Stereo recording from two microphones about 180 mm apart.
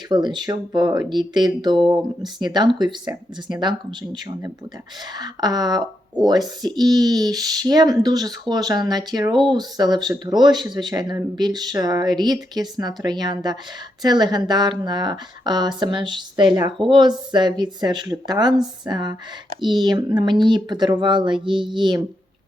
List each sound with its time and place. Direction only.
0.1 s speech: 25° right (ahead or behind)